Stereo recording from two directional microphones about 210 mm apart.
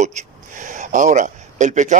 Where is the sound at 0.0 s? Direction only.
35° right (ahead or behind).